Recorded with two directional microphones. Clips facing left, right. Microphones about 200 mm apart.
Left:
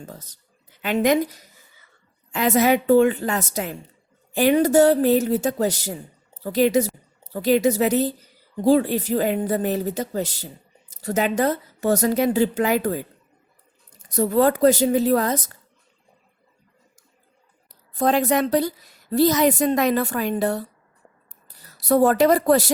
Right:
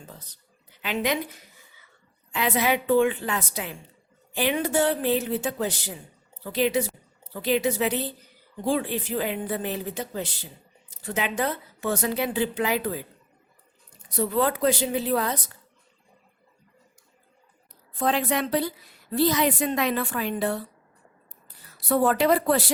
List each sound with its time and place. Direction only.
0.0 s a woman's voice: 45° left (ahead or behind)
17.9 s a woman's voice: 40° left (ahead or behind)